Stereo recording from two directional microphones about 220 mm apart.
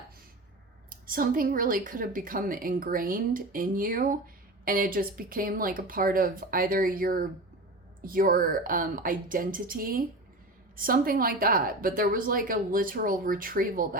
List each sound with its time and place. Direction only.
0.9 s a woman's voice: 40° right (ahead or behind)